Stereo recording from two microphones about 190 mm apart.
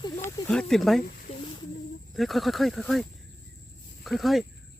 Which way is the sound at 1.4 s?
25° left (ahead or behind).